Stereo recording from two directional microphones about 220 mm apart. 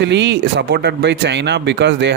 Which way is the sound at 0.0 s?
50° right (ahead or behind).